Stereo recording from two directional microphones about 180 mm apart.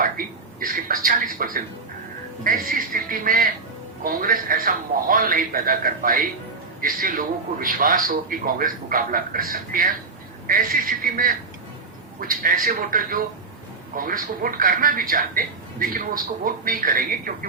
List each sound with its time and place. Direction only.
0.0 s speech: 50° right (ahead or behind)